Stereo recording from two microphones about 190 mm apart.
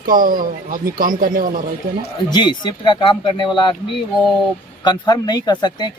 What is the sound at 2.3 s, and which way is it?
Speech, 25° left (ahead or behind).